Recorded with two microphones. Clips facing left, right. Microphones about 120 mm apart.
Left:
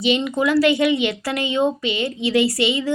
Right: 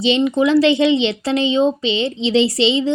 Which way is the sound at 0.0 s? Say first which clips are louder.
Right 4 dB; 25° right (ahead or behind).